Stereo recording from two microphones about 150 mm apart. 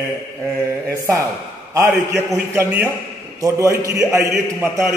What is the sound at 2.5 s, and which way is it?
Mantra, 10° right (ahead or behind).